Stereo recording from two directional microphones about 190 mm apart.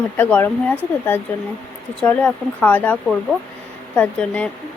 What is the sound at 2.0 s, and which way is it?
Speech, 10° left (ahead or behind).